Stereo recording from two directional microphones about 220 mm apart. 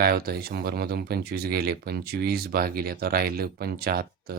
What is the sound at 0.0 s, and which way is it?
Speech, 45° right (ahead or behind).